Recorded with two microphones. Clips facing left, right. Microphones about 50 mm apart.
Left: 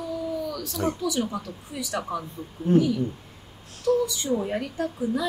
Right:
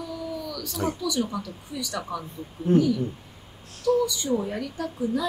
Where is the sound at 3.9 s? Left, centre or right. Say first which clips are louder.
Even; left.